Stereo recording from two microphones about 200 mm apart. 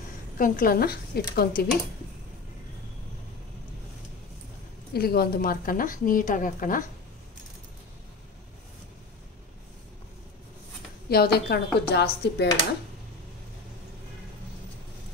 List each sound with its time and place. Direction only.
0.4 s a woman's voice: 45° left (ahead or behind)
4.9 s a woman's voice: 50° left (ahead or behind)
11.1 s a woman's voice: 50° left (ahead or behind)